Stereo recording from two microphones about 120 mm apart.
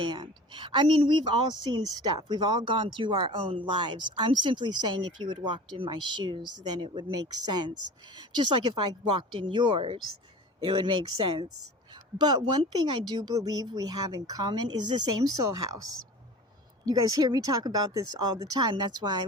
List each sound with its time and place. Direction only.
0.0 s speech: 40° right (ahead or behind)
16.8 s speech: 30° right (ahead or behind)